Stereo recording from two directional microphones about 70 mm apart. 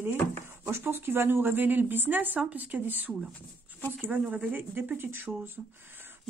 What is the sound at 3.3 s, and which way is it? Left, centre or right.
Speech, left.